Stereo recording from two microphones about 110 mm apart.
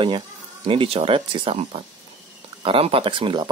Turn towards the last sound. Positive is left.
turn(degrees=-45)  # may be behind; listen again after turning